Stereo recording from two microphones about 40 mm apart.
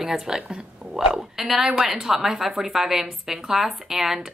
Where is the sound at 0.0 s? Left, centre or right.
Centre.